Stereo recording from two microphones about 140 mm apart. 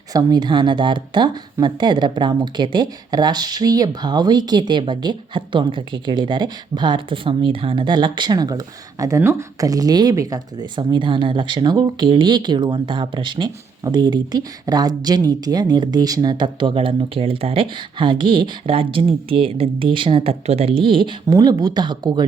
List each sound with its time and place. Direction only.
0.1 s speech: 25° right (ahead or behind)